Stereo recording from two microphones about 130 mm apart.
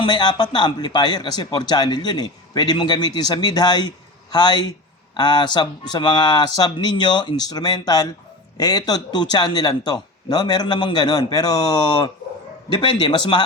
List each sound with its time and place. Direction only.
0.0 s speech: 35° left (ahead or behind)